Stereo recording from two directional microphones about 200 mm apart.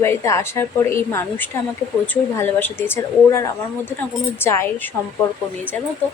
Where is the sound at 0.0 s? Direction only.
15° left (ahead or behind).